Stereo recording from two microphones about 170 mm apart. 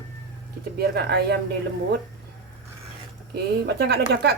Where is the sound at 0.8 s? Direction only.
75° right (ahead or behind).